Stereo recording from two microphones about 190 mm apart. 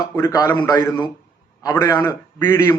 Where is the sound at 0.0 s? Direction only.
20° left (ahead or behind).